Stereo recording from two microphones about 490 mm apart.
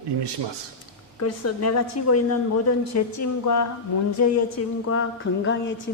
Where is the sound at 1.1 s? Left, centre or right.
Left.